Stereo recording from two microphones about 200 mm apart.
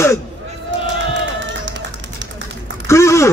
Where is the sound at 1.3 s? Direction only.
65° right (ahead or behind).